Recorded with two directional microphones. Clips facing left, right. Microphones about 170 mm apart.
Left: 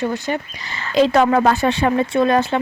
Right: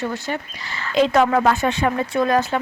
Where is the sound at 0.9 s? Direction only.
30° left (ahead or behind).